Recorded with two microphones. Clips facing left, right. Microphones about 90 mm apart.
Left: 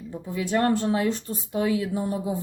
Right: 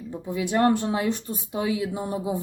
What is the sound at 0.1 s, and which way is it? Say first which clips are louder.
Speech: even; 20° right (ahead or behind).